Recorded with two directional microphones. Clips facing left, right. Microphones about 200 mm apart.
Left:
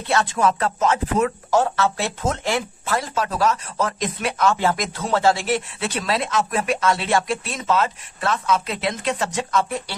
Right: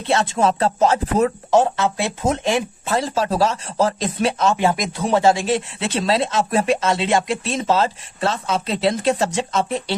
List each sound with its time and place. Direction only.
0.0 s speech: 25° right (ahead or behind)
1.5 s speech: 20° right (ahead or behind)